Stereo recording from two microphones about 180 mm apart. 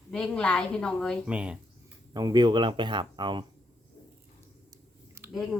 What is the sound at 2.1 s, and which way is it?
Speech, 25° right (ahead or behind).